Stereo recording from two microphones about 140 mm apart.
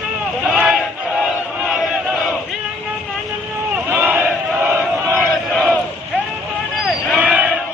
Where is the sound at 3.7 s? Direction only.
10° right (ahead or behind).